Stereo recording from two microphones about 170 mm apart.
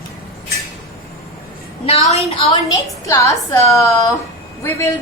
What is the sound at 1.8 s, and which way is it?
Speech, 35° left (ahead or behind).